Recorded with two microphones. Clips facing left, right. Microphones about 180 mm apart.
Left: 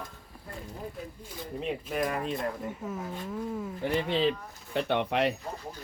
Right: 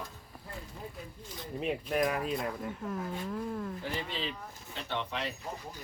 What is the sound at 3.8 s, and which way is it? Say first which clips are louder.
Speech: left 10 dB; 65° left (ahead or behind).